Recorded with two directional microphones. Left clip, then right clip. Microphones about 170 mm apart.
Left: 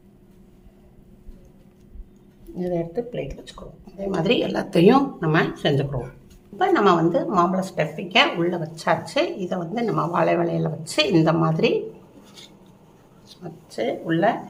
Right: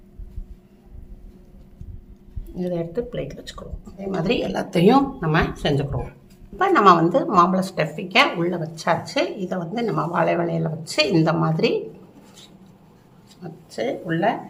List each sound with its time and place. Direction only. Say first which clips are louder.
2.6 s speech: even; 10° right (ahead or behind)
3.9 s speech: left 2 dB; 20° left (ahead or behind); by 6.0 s 5° left (ahead or behind)
6.6 s a woman's voice: right 3 dB; 10° right (ahead or behind)
13.4 s speech: even; centre (ahead or behind)
14.1 s speech: left 2 dB; 20° left (ahead or behind)